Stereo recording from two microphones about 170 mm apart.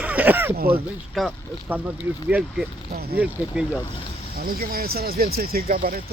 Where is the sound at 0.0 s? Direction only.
10° right (ahead or behind).